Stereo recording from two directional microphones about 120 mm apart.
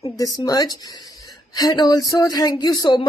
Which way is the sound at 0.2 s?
30° left (ahead or behind).